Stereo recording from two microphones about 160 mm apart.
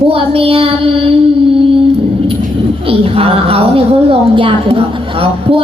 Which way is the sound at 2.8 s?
35° right (ahead or behind).